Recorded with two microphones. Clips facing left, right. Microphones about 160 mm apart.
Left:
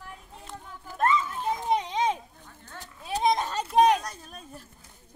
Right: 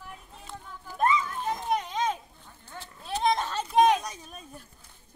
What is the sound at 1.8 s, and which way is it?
Children playing, 25° left (ahead or behind).